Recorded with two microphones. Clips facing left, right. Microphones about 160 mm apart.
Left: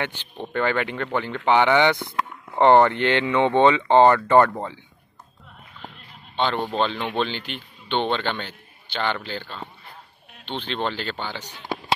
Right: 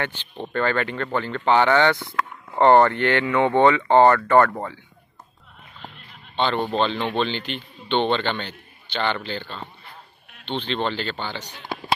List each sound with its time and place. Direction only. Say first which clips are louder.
0.5 s speech: even; 15° left (ahead or behind)
6.3 s speech: right 1 dB; 10° left (ahead or behind)